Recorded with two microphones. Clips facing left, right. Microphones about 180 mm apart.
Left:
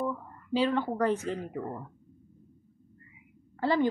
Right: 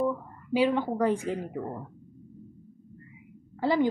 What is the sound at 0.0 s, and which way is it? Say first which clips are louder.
Speech: right 5 dB; 10° right (ahead or behind).